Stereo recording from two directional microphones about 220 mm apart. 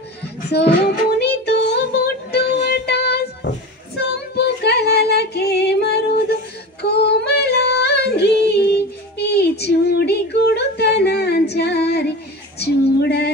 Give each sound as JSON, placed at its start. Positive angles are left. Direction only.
{"t": 0.2, "sound": "child singing", "side_deg": 50}
{"t": 6.8, "sound": "female singing", "side_deg": 50}